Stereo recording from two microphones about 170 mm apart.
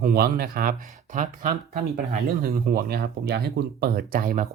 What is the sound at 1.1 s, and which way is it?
Speech, 45° right (ahead or behind).